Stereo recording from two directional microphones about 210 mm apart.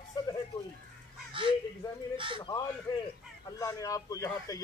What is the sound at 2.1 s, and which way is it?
Speech, 25° right (ahead or behind).